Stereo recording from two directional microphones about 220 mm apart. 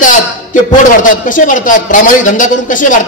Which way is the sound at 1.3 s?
35° left (ahead or behind).